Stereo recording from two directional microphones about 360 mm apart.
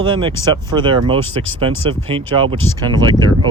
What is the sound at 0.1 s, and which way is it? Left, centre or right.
Speech, centre.